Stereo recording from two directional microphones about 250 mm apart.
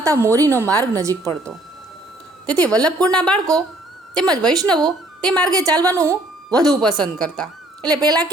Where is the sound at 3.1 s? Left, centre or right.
Centre.